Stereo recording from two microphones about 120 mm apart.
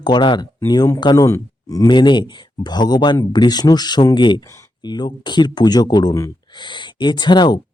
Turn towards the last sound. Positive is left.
turn(degrees=40)  # may be behind; listen again after turning